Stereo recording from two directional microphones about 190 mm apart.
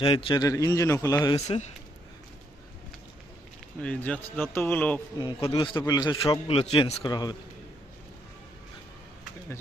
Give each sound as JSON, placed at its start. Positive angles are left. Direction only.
{"t": 0.0, "sound": "a man's voice", "side_deg": 30}
{"t": 3.8, "sound": "a man's voice", "side_deg": 5}